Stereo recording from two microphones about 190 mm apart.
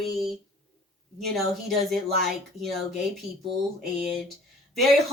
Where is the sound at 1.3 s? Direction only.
Centre (ahead or behind).